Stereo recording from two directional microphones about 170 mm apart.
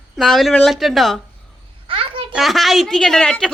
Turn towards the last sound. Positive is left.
turn(degrees=5)  # may be behind; listen again after turning